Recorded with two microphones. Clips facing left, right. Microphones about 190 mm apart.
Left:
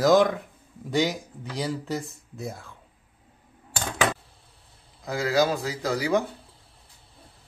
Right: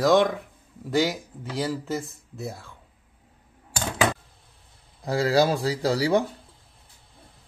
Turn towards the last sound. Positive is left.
turn(degrees=-30)  # may be behind; listen again after turning